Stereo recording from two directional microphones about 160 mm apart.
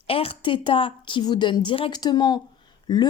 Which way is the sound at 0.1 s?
35° left (ahead or behind).